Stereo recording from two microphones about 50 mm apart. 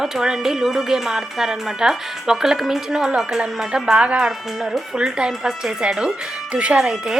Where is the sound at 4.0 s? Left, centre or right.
Right.